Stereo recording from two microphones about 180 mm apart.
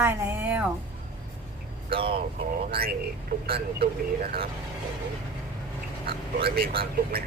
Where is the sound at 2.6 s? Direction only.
55° right (ahead or behind).